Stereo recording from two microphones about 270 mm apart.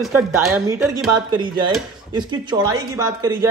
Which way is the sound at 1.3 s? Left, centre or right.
Centre.